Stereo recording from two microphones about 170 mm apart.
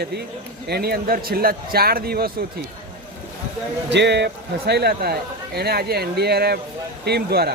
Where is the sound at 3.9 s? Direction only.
90° right.